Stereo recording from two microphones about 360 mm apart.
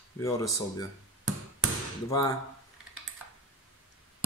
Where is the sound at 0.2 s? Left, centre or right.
Centre.